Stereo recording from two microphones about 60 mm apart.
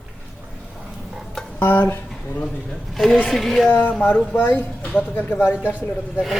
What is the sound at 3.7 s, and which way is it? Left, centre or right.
Speech, left.